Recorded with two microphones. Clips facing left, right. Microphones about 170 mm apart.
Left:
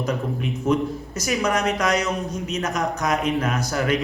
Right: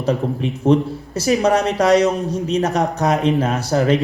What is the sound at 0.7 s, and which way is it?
A man's voice, 30° right (ahead or behind).